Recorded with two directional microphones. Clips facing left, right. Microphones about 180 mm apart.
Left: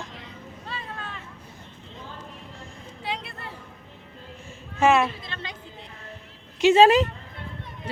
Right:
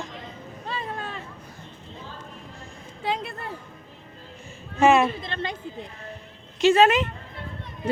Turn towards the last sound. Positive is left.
turn(degrees=35)  # may be behind; listen again after turning